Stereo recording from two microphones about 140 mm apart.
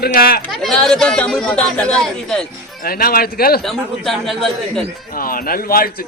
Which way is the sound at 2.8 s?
90° left.